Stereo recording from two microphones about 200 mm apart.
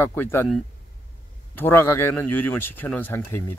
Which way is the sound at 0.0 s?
10° left (ahead or behind).